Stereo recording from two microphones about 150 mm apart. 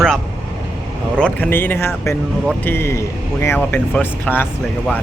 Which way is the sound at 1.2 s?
10° left (ahead or behind).